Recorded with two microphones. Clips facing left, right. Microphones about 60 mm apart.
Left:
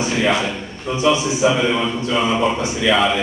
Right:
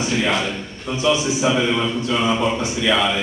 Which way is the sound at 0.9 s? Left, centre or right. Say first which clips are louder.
Left 2 dB; left.